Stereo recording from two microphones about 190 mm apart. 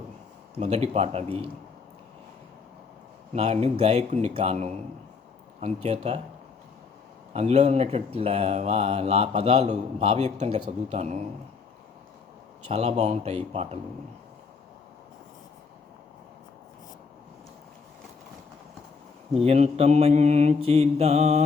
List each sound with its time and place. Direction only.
0.5 s speech: 35° right (ahead or behind)
3.3 s speech: 35° right (ahead or behind)
7.3 s speech: 35° right (ahead or behind)
12.6 s speech: 35° right (ahead or behind)
19.3 s speech: 30° right (ahead or behind)